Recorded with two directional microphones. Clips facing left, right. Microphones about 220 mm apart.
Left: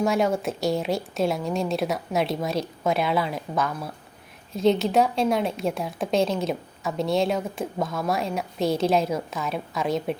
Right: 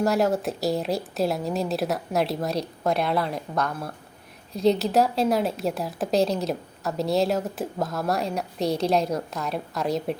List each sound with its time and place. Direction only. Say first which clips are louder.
0.0 s a woman's voice: even; centre (ahead or behind)